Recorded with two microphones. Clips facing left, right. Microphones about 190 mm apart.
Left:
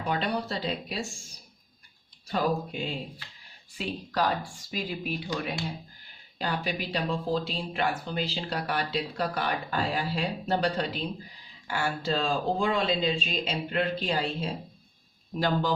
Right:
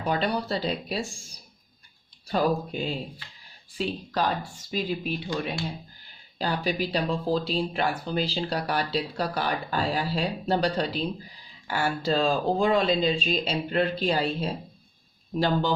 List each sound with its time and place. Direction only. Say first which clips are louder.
0.1 s speech: right 3 dB; 35° right (ahead or behind)
2.2 s speech: right 3 dB; 35° right (ahead or behind)
3.8 s speech: right 2 dB; 25° right (ahead or behind)
6.4 s speech: right 4 dB; 35° right (ahead or behind)
15.4 s speech: right 3 dB; 30° right (ahead or behind)